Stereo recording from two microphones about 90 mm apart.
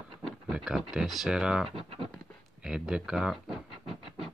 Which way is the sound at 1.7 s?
90° right.